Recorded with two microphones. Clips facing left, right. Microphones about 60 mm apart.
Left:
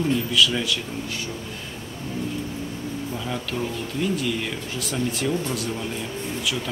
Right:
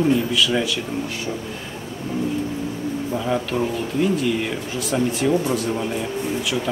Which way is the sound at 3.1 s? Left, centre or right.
Centre.